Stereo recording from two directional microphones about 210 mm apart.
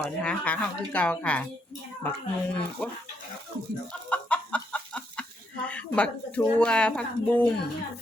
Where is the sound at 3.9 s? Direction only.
5° left (ahead or behind).